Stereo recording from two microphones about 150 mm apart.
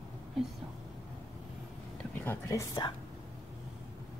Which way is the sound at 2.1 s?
15° left (ahead or behind).